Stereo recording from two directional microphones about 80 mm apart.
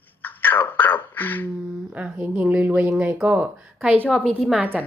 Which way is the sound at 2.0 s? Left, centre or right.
Right.